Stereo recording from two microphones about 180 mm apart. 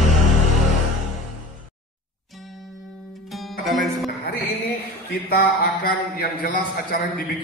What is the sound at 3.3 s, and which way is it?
Music, centre (ahead or behind).